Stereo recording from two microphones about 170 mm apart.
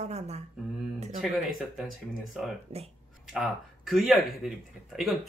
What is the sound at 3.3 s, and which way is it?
Speech, centre (ahead or behind).